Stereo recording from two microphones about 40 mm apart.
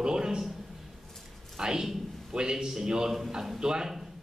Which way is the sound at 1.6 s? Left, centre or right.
Centre.